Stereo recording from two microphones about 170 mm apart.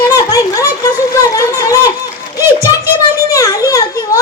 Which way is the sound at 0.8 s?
20° left (ahead or behind).